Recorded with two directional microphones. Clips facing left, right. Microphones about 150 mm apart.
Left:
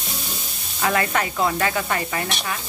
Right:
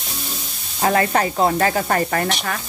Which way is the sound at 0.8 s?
35° right (ahead or behind).